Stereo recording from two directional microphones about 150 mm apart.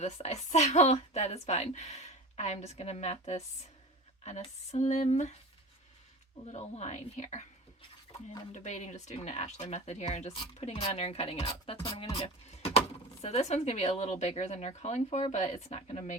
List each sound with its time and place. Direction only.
0.0 s a woman's voice: 45° left (ahead or behind)
6.4 s a woman's voice: 45° left (ahead or behind)
8.5 s a woman's voice: 50° left (ahead or behind)